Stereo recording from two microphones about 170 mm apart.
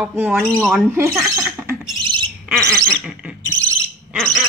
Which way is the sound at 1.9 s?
30° right (ahead or behind).